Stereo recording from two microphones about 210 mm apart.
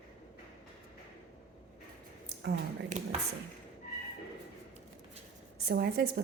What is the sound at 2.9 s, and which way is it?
Speech, 35° right (ahead or behind).